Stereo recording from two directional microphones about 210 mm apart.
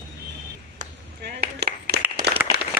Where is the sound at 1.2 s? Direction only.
50° right (ahead or behind).